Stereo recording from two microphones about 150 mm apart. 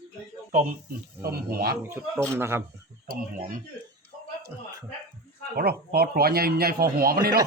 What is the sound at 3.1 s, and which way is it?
Speech, 70° right (ahead or behind).